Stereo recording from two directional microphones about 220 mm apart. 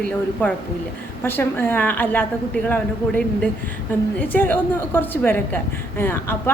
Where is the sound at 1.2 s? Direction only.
10° left (ahead or behind).